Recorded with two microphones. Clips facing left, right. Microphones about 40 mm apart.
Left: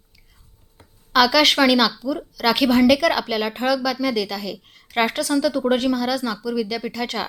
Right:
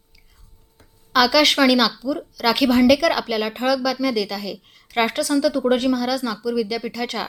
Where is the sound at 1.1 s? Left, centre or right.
Centre.